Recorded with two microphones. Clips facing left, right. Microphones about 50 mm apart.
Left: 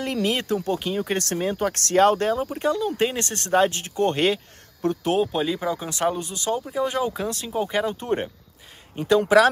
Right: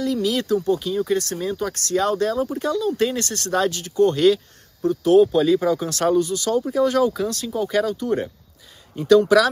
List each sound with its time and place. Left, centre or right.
0.0 s speech: left
4.8 s speech: left
5.3 s speech: left